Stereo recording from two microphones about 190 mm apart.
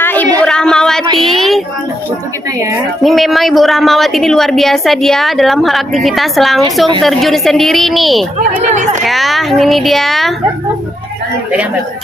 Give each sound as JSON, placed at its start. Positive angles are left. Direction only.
{"t": 0.0, "sound": "a sound", "side_deg": 10}
{"t": 3.0, "sound": "a woman's voice", "side_deg": 0}
{"t": 8.4, "sound": "speech", "side_deg": -40}
{"t": 9.0, "sound": "a woman's voice", "side_deg": 0}